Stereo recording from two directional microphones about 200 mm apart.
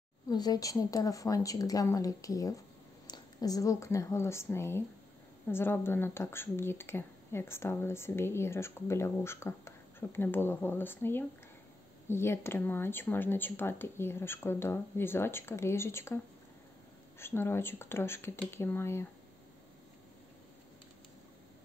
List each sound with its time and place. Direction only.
0.3 s a woman's voice: 20° left (ahead or behind)
17.2 s speech: 10° left (ahead or behind)